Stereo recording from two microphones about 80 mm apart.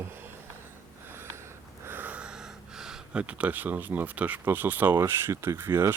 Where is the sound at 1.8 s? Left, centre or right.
Right.